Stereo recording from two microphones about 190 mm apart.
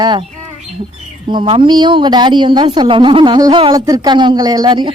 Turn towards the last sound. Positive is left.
turn(degrees=-20)  # may be behind; listen again after turning